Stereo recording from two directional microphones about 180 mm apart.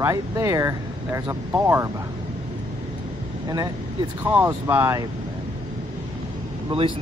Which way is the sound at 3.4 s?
20° right (ahead or behind).